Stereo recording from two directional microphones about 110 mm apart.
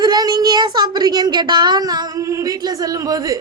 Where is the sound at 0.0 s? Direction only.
35° right (ahead or behind).